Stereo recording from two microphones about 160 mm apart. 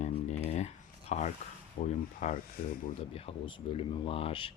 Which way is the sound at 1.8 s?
50° left (ahead or behind).